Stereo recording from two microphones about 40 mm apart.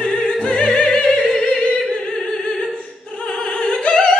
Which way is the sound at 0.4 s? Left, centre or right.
Left.